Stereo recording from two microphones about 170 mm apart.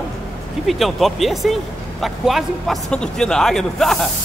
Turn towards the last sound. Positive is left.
turn(degrees=0)  # may be behind; listen again after turning